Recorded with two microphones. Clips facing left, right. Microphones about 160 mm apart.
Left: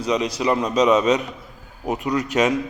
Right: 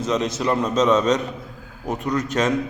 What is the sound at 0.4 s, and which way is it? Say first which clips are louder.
A man's voice: left 1 dB; 5° left (ahead or behind).